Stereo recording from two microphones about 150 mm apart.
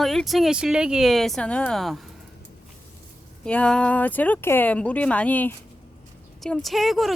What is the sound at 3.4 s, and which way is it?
Speech, 5° left (ahead or behind).